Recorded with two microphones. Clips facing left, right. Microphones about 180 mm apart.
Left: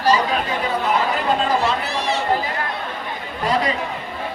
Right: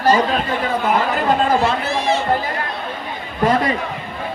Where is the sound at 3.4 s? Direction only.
50° right (ahead or behind).